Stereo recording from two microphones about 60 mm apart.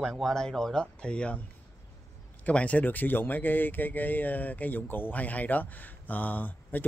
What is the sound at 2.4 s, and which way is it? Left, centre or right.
Speech, left.